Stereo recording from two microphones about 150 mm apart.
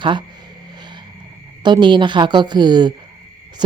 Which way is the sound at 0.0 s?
30° right (ahead or behind).